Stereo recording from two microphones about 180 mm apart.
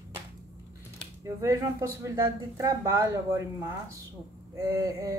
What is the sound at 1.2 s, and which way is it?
Speech, 15° right (ahead or behind).